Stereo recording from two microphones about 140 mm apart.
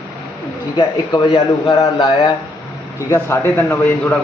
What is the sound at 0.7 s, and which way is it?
Speech, 35° left (ahead or behind).